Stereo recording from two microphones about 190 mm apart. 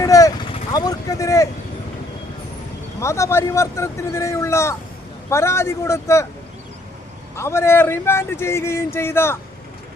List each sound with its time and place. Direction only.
0.0 s speech: 20° left (ahead or behind)
3.0 s speech: 15° left (ahead or behind)
7.3 s speech: 15° left (ahead or behind)